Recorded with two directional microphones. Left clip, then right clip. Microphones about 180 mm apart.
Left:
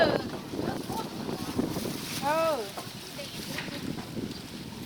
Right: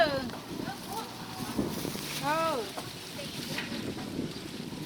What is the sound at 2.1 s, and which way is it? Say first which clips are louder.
Boat: left 3 dB; 55° left (ahead or behind).